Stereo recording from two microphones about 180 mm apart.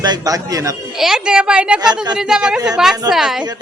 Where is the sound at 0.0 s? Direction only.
20° right (ahead or behind).